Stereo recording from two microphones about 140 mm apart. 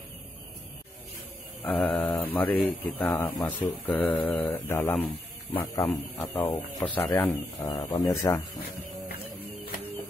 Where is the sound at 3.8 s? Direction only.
10° left (ahead or behind).